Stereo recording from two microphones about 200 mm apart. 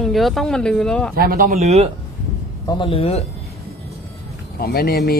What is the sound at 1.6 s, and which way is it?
Speech, 30° right (ahead or behind).